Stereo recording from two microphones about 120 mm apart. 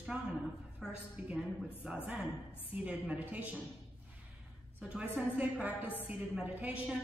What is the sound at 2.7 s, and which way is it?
Speech, 10° right (ahead or behind).